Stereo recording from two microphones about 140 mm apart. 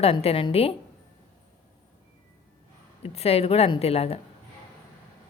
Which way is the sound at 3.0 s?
45° left (ahead or behind).